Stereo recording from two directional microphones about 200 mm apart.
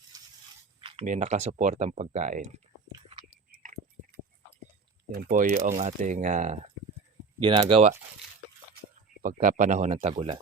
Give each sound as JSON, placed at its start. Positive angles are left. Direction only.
{"t": 0.1, "sound": "crunch", "side_deg": -20}
{"t": 0.8, "sound": "a sound", "side_deg": -25}
{"t": 1.0, "sound": "speech", "side_deg": -40}
{"t": 2.9, "sound": "a sound", "side_deg": -25}
{"t": 3.5, "sound": "a sound", "side_deg": -40}
{"t": 5.1, "sound": "speech", "side_deg": -55}
{"t": 5.4, "sound": "speech", "side_deg": -35}
{"t": 7.3, "sound": "speech", "side_deg": -25}
{"t": 9.2, "sound": "speech", "side_deg": -40}